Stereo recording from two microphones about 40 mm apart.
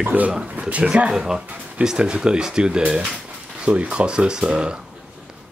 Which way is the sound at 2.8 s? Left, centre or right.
Right.